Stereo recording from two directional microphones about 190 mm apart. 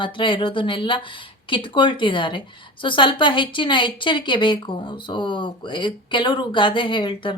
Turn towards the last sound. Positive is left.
turn(degrees=25)  # may be behind; listen again after turning